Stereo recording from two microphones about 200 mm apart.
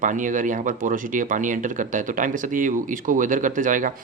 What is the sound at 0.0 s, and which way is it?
Speech, 40° right (ahead or behind).